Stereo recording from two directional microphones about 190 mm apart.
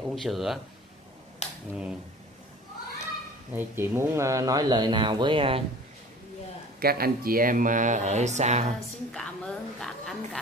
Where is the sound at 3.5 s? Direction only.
10° right (ahead or behind); by 5.6 s 25° right (ahead or behind).